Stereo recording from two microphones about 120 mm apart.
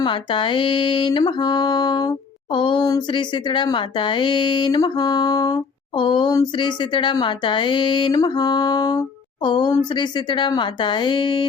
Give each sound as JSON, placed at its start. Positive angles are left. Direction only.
{"t": 0.0, "sound": "speech", "side_deg": 45}